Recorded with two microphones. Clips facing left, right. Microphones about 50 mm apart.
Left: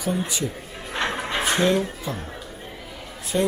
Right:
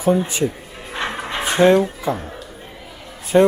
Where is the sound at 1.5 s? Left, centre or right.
Right.